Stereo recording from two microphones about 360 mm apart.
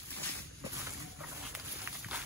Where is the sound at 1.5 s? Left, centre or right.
Centre.